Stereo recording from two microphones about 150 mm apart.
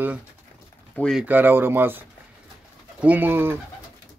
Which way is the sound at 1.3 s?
15° right (ahead or behind).